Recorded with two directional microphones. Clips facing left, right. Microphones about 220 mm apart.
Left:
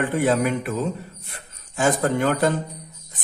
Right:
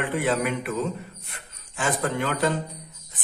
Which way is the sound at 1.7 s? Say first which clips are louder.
Left 6 dB; 40° left (ahead or behind).